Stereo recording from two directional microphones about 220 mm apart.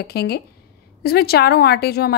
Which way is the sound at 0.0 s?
45° left (ahead or behind).